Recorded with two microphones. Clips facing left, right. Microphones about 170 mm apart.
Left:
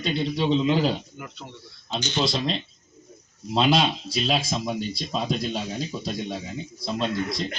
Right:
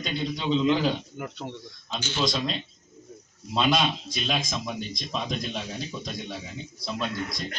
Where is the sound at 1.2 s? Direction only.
60° right (ahead or behind).